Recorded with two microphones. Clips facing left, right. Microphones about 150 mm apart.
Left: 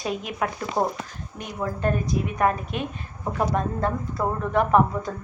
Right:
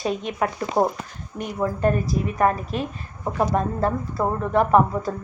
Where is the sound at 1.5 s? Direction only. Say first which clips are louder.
Right 4 dB; 5° right (ahead or behind).